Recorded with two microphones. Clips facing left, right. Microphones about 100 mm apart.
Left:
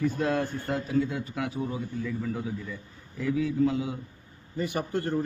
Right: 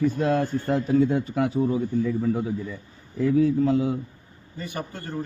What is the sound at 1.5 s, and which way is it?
Speech, 35° right (ahead or behind).